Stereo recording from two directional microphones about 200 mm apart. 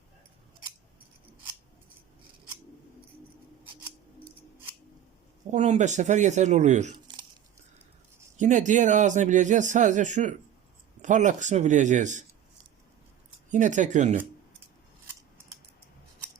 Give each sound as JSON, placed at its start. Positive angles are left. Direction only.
{"t": 5.5, "sound": "speech", "side_deg": -35}
{"t": 8.4, "sound": "speech", "side_deg": -40}
{"t": 13.5, "sound": "speech", "side_deg": -40}